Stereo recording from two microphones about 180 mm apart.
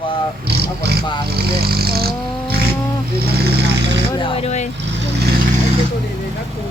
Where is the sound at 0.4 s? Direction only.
65° right (ahead or behind).